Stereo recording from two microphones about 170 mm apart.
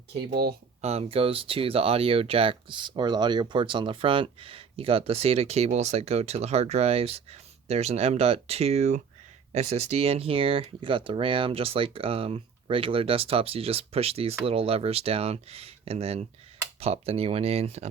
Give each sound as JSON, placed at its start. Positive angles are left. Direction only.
{"t": 0.8, "sound": "speech", "side_deg": -40}